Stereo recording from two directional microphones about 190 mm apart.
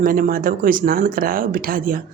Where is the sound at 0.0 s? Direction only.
50° right (ahead or behind).